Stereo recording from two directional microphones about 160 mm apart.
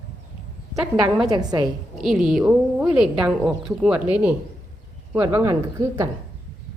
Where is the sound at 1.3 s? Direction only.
25° right (ahead or behind).